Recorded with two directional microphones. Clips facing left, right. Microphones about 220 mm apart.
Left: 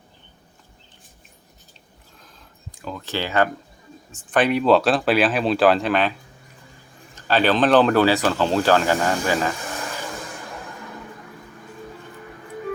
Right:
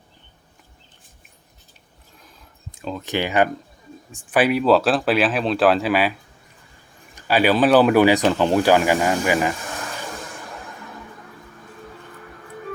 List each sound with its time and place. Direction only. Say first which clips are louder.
2.7 s speech: right 3 dB; 20° right (ahead or behind)
7.2 s speech: right 1 dB; 10° right (ahead or behind)